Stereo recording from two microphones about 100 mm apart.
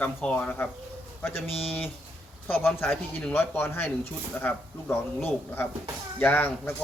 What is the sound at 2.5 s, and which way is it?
Speech, 20° left (ahead or behind).